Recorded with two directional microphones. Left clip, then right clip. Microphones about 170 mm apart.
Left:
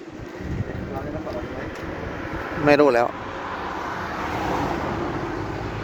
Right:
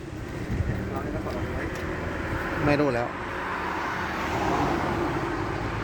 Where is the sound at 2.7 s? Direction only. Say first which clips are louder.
Left 9 dB; 70° left (ahead or behind).